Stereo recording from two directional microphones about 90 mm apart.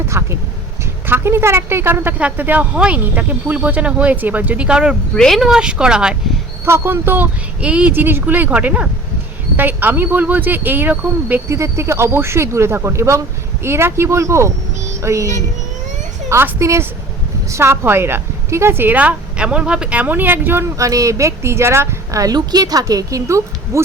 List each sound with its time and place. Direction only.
0.1 s speech: 30° right (ahead or behind); by 4.9 s 10° right (ahead or behind)
5.1 s speech: 5° left (ahead or behind)
6.7 s a woman's voice: 25° right (ahead or behind)
11.4 s a woman's voice: 30° right (ahead or behind)